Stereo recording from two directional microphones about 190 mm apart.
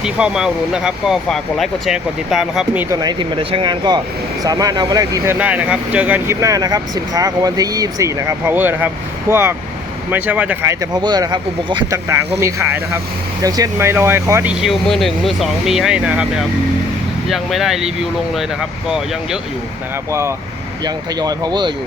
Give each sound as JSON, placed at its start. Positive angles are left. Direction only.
{"t": 0.0, "sound": "speech", "side_deg": -5}
{"t": 2.9, "sound": "speech", "side_deg": -20}
{"t": 14.5, "sound": "speech", "side_deg": 0}
{"t": 17.2, "sound": "speech", "side_deg": 0}
{"t": 20.1, "sound": "speech", "side_deg": -15}